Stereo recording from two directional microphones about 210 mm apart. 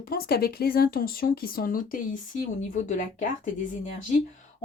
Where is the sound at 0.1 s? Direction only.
45° left (ahead or behind).